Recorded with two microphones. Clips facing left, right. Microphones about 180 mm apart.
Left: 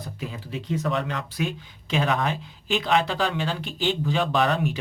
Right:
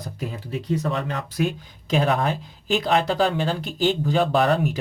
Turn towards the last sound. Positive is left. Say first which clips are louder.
# right 3 dB
turn(degrees=-35)  # may be behind; listen again after turning